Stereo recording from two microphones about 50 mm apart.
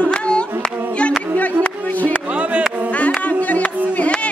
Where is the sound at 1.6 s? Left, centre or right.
Left.